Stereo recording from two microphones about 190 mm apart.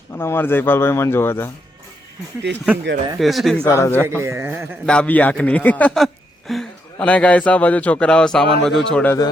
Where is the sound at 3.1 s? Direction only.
Centre (ahead or behind).